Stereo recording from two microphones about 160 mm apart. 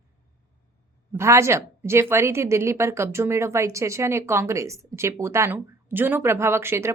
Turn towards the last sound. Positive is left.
turn(degrees=-15)  # may be behind; listen again after turning